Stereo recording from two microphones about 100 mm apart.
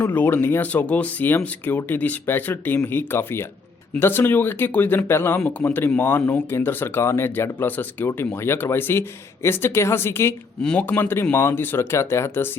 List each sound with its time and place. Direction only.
0.1 s speech: 20° left (ahead or behind)
10.6 s speech: 10° left (ahead or behind)
10.8 s speech: 20° left (ahead or behind)